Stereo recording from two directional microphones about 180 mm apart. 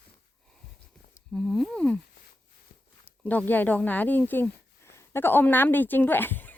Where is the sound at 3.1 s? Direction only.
10° left (ahead or behind).